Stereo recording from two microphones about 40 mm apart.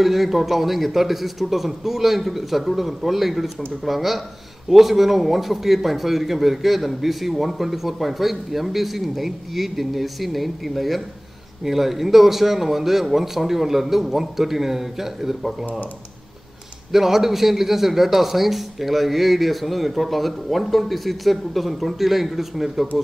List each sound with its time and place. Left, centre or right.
0.0 s a man's voice: centre
16.9 s a man's voice: centre